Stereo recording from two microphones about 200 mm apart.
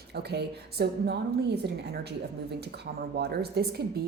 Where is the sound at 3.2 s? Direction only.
55° right (ahead or behind).